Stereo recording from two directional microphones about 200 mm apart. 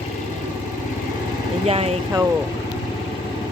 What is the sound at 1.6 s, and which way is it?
Speech, 30° right (ahead or behind).